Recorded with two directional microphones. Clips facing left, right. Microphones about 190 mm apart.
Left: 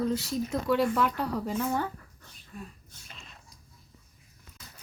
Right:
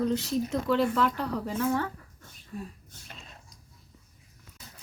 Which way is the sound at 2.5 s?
30° right (ahead or behind).